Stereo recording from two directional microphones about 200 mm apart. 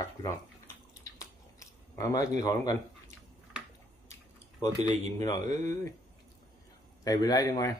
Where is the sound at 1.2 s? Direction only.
15° left (ahead or behind).